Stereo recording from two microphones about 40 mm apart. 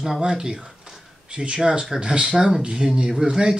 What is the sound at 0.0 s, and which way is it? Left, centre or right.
Speech, centre.